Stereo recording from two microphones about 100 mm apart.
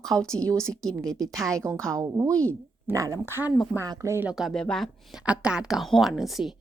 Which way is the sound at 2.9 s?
35° right (ahead or behind).